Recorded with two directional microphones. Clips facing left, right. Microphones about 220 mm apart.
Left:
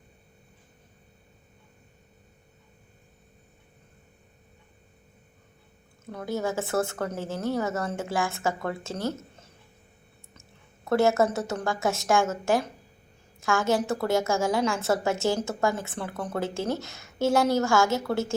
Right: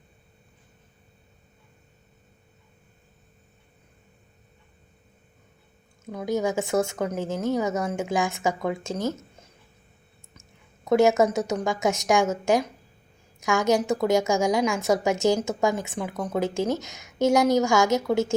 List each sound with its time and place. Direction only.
6.1 s a woman's voice: 15° right (ahead or behind)
10.8 s a woman's voice: 15° right (ahead or behind)